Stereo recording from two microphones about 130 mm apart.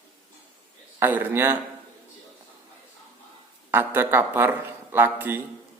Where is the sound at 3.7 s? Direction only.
15° right (ahead or behind).